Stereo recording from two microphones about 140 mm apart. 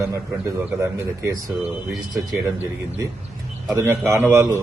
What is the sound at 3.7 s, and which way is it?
Speech, 20° right (ahead or behind).